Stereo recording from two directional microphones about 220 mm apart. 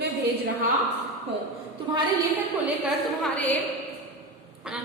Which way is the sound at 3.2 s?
5° left (ahead or behind).